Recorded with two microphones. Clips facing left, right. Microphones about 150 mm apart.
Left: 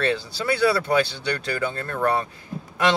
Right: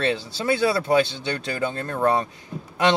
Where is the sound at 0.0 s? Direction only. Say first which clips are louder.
Even; 25° right (ahead or behind).